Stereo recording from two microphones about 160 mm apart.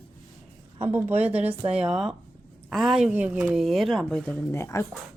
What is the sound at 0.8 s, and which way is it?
Speech, 15° right (ahead or behind).